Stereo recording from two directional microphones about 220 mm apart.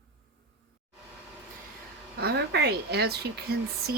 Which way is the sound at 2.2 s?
50° right (ahead or behind).